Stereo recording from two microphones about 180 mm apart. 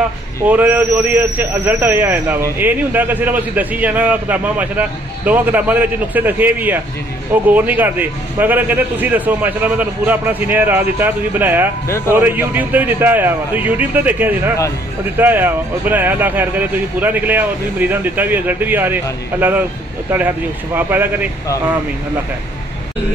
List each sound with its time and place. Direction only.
0.4 s a man's voice: 10° right (ahead or behind)
20.1 s a man's voice: 10° right (ahead or behind)